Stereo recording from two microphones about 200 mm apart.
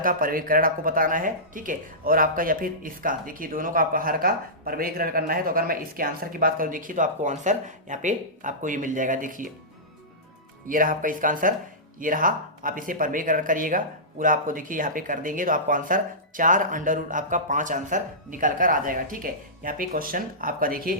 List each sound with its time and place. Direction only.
0.0 s speech: 45° right (ahead or behind)
10.7 s speech: 40° right (ahead or behind)